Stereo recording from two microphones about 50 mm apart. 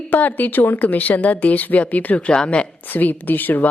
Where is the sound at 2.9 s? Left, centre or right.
Left.